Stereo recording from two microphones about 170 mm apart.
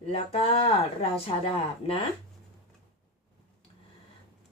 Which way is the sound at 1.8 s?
35° left (ahead or behind).